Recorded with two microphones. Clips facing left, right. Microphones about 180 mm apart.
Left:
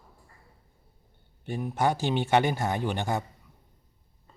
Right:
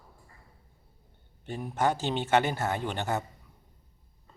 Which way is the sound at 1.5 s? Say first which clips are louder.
Left 1 dB; 10° left (ahead or behind).